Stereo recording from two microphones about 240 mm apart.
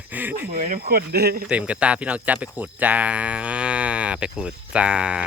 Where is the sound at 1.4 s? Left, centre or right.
Centre.